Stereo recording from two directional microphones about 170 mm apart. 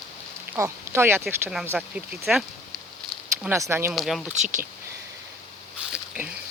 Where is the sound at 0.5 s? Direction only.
15° right (ahead or behind).